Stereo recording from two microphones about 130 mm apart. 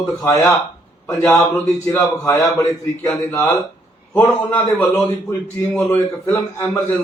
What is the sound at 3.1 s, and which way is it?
A man's voice, 15° left (ahead or behind).